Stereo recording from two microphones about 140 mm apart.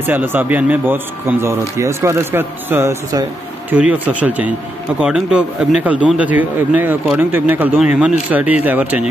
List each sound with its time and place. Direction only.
0.0 s speech: 15° right (ahead or behind)
3.7 s speech: 10° right (ahead or behind)